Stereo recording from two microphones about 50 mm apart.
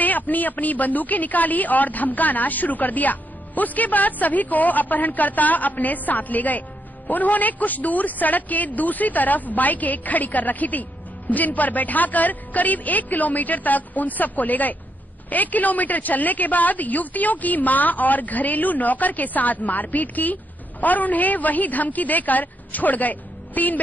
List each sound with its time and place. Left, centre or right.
0.0 s a woman's voice: left